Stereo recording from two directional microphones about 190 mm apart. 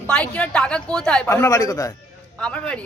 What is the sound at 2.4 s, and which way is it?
Speech, 5° left (ahead or behind).